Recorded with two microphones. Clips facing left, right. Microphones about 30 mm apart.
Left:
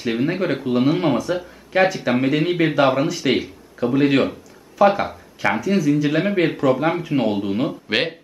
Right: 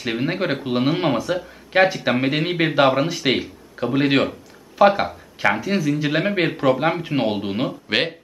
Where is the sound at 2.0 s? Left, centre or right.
Centre.